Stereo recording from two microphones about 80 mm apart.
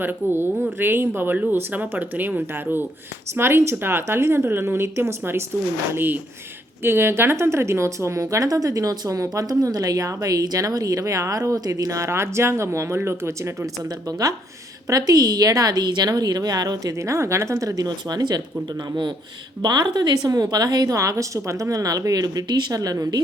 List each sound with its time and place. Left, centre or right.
0.0 s a woman's voice: right
14.1 s a woman's voice: right
17.0 s a woman's voice: right
19.6 s a woman's voice: right